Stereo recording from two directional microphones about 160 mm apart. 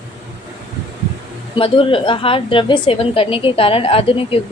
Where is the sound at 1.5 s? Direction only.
35° left (ahead or behind).